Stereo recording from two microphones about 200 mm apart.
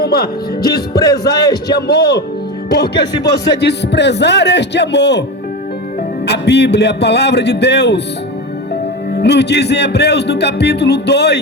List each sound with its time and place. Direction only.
0.0 s speech: 50° left (ahead or behind)
0.6 s music: 20° left (ahead or behind)
1.7 s a man's voice: 55° left (ahead or behind)
6.2 s a man's voice: 55° left (ahead or behind)
9.1 s a man's voice: 55° left (ahead or behind)